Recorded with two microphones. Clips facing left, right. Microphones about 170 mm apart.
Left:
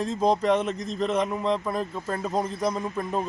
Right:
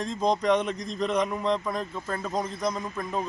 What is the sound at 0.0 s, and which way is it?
Speech, 5° left (ahead or behind).